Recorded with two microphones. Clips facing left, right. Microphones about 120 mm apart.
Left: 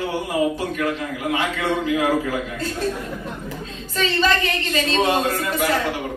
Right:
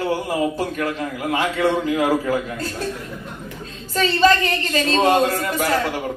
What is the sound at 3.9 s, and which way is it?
A woman's voice, 40° right (ahead or behind).